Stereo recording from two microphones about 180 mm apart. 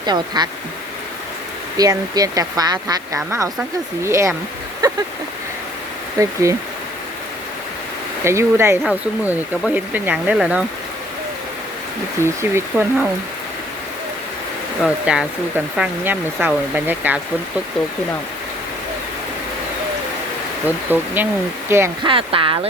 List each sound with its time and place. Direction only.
0.0 s speech: 25° right (ahead or behind)
1.7 s speech: 20° right (ahead or behind)
4.8 s a sound: 20° right (ahead or behind)
6.1 s speech: 15° right (ahead or behind)
8.2 s speech: 15° right (ahead or behind)
12.2 s speech: 15° right (ahead or behind)
14.8 s speech: 5° right (ahead or behind)
20.7 s speech: 10° right (ahead or behind)
22.0 s speech: 30° right (ahead or behind)